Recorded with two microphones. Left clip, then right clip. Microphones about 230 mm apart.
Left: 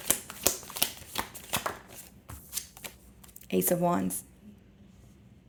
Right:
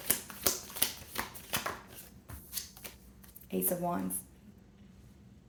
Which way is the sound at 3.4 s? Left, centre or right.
Left.